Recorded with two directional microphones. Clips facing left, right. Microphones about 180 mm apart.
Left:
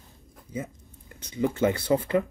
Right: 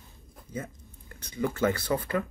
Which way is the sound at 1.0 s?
20° left (ahead or behind).